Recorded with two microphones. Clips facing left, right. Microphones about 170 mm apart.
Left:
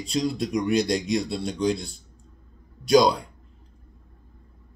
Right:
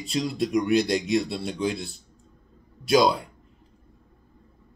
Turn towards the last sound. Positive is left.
turn(degrees=0)  # may be behind; listen again after turning